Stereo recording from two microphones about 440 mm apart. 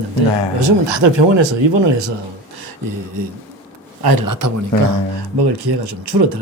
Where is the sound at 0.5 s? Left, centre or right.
Right.